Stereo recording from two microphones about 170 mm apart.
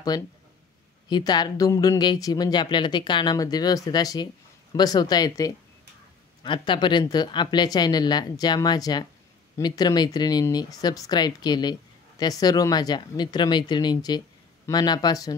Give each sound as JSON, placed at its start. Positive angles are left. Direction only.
{"t": 0.1, "sound": "speech", "side_deg": 20}